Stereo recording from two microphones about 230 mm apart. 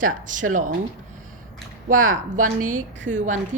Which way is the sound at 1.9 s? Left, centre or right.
Right.